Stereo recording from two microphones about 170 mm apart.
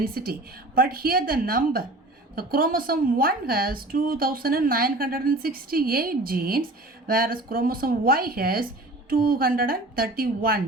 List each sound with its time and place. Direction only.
0.0 s a woman's voice: 60° right (ahead or behind)